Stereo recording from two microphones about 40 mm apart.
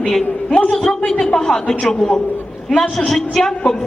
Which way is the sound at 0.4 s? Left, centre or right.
Left.